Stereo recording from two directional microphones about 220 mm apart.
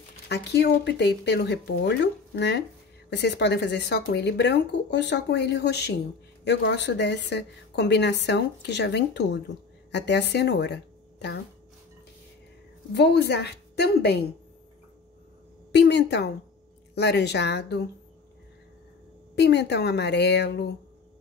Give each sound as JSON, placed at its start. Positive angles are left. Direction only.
{"t": 0.3, "sound": "a woman's voice", "side_deg": 50}
{"t": 12.9, "sound": "a woman's voice", "side_deg": 50}
{"t": 15.7, "sound": "a woman's voice", "side_deg": 50}
{"t": 19.3, "sound": "a woman's voice", "side_deg": 50}